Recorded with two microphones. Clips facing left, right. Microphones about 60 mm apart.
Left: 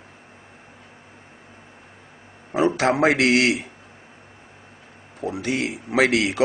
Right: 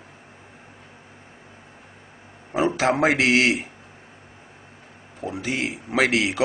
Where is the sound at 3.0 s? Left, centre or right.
Left.